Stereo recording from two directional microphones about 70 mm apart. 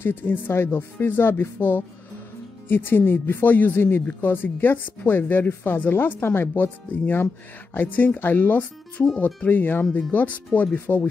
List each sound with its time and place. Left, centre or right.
0.0 s speech: left